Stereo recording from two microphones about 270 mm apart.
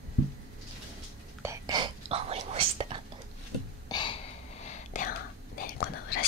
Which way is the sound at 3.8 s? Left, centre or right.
Centre.